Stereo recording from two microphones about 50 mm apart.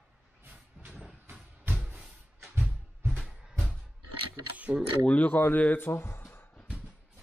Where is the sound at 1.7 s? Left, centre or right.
Right.